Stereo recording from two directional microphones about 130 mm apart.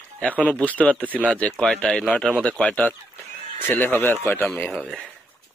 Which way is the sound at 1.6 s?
5° left (ahead or behind).